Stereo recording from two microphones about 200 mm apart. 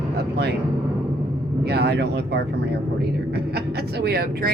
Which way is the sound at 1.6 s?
55° right (ahead or behind).